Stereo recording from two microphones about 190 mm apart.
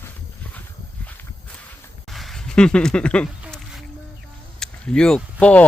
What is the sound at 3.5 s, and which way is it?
Music, centre (ahead or behind).